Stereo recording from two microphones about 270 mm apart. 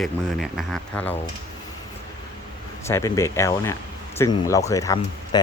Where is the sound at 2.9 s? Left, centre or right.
Centre.